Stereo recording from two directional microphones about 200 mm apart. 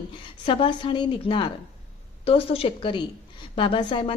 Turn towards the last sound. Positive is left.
turn(degrees=25)  # may be behind; listen again after turning